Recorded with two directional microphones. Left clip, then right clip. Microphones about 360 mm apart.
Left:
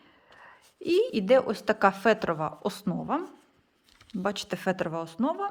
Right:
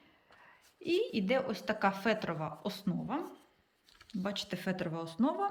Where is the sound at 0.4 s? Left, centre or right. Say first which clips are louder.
Left 7 dB; centre.